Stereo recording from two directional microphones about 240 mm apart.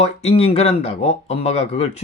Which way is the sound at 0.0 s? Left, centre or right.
Left.